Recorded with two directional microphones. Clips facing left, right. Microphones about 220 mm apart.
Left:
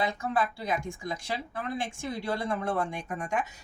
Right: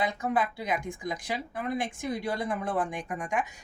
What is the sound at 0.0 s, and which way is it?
Speech, 20° right (ahead or behind).